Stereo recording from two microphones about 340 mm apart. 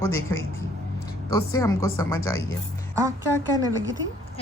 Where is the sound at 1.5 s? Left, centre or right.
Centre.